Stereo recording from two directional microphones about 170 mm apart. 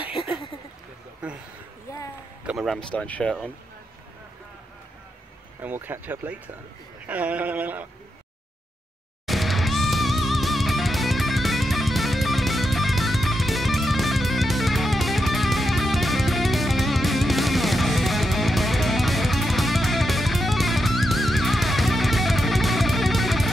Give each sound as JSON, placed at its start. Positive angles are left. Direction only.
{"t": 0.1, "sound": "a sound", "side_deg": 30}
{"t": 1.2, "sound": "speech", "side_deg": -5}
{"t": 1.9, "sound": "a sound", "side_deg": 20}
{"t": 2.4, "sound": "speech", "side_deg": 0}
{"t": 5.6, "sound": "speech", "side_deg": -10}
{"t": 9.2, "sound": "music", "side_deg": 0}